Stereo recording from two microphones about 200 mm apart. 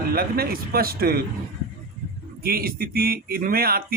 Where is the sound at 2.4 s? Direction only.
50° right (ahead or behind).